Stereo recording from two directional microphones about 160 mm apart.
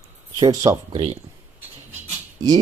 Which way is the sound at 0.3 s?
25° right (ahead or behind).